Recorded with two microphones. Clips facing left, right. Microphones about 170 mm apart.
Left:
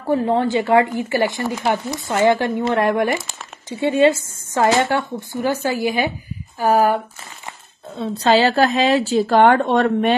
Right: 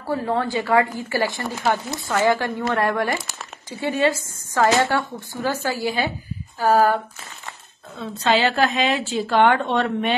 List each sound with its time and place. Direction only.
0.1 s a woman's voice: 20° left (ahead or behind)
8.0 s a woman's voice: 35° left (ahead or behind)